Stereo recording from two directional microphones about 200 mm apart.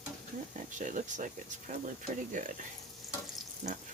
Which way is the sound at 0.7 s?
40° right (ahead or behind).